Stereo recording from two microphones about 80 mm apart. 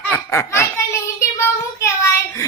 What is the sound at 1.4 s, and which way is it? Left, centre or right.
Child singing, left.